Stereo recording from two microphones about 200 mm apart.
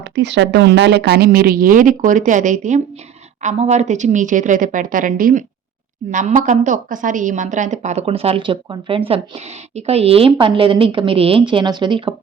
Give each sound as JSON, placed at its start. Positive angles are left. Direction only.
{"t": 0.0, "sound": "a woman's voice", "side_deg": -60}